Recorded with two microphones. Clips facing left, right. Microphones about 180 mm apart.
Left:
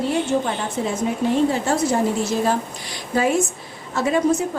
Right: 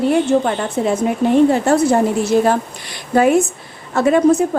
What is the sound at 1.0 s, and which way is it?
A woman's voice, 60° right (ahead or behind).